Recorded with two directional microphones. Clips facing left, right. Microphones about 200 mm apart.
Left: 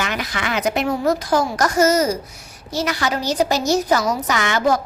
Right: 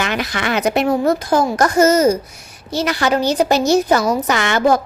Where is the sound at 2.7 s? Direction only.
30° right (ahead or behind).